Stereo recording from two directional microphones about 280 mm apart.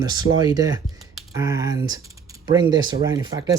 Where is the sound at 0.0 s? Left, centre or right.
Centre.